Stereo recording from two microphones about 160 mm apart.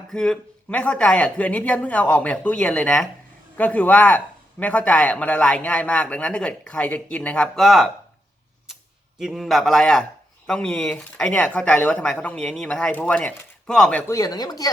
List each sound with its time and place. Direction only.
0.1 s speech: 5° left (ahead or behind)
9.1 s a man's voice: centre (ahead or behind)
14.1 s speech: 25° left (ahead or behind)